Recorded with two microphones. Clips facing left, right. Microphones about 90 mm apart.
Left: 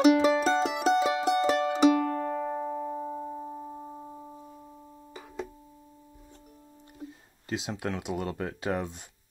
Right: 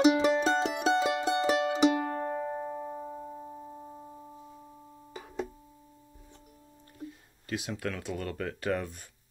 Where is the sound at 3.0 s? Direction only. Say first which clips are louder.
Left 5 dB; 30° left (ahead or behind).